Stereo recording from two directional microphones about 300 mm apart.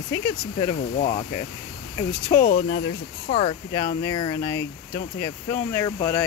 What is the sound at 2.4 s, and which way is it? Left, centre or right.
Speech, left.